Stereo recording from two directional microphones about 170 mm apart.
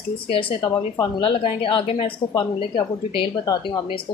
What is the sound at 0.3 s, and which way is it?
A woman's voice, 30° left (ahead or behind).